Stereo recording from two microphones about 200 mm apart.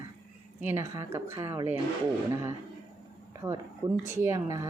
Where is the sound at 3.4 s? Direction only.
15° right (ahead or behind).